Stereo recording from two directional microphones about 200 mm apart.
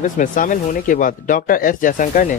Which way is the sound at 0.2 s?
40° left (ahead or behind).